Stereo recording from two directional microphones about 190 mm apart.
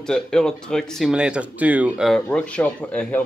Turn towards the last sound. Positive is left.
turn(degrees=5)  # may be behind; listen again after turning